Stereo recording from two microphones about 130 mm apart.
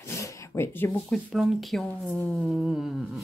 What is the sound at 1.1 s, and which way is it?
Speech, centre (ahead or behind).